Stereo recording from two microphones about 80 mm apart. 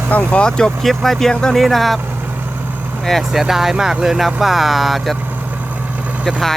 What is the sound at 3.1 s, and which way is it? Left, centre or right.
Speech, centre.